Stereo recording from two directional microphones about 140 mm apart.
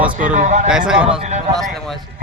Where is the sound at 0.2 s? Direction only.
65° right (ahead or behind).